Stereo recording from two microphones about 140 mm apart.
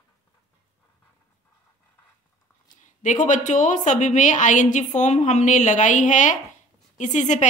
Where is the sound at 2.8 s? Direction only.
60° left (ahead or behind).